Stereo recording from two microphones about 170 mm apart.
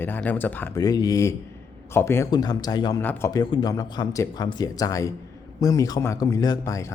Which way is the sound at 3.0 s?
15° left (ahead or behind).